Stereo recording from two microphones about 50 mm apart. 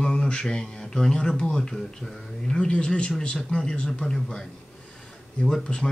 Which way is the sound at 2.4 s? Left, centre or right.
Centre.